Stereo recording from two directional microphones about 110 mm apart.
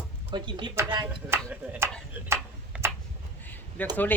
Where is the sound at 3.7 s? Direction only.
15° left (ahead or behind).